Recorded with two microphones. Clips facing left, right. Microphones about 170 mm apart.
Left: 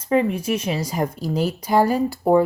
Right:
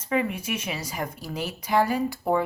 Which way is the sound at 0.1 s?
35° left (ahead or behind).